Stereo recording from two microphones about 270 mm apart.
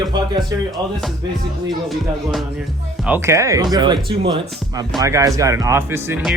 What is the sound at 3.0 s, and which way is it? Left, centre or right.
Speech, centre.